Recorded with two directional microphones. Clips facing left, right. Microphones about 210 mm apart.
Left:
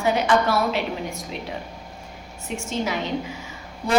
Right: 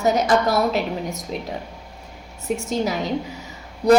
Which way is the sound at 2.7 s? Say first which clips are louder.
Right 1 dB; 40° right (ahead or behind).